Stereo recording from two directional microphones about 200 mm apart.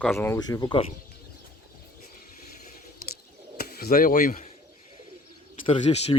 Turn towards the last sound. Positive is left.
turn(degrees=30)  # may be behind; listen again after turning